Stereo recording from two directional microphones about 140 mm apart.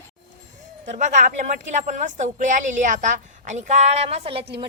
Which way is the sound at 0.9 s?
60° right (ahead or behind).